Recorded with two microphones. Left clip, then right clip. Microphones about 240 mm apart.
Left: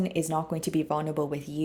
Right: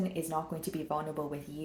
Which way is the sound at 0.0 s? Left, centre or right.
Left.